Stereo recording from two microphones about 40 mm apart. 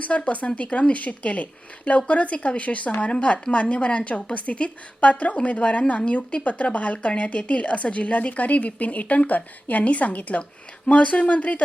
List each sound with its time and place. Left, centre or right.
0.0 s a woman's voice: left